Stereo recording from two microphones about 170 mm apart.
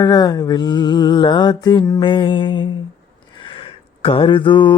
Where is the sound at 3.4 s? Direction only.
30° left (ahead or behind).